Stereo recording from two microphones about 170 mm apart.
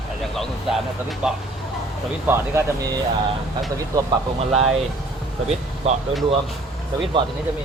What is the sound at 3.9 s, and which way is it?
Speech, 25° right (ahead or behind).